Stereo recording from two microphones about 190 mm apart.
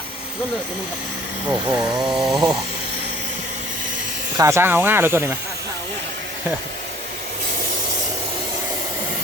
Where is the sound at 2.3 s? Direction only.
25° right (ahead or behind).